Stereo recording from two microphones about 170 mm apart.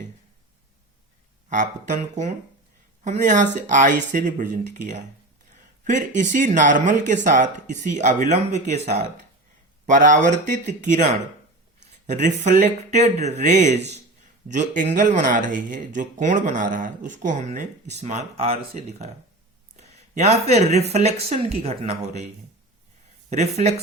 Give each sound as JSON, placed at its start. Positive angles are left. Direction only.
{"t": 1.5, "sound": "speech", "side_deg": -45}
{"t": 19.7, "sound": "a sound", "side_deg": -40}
{"t": 20.9, "sound": "speech", "side_deg": -40}
{"t": 23.3, "sound": "speech", "side_deg": -40}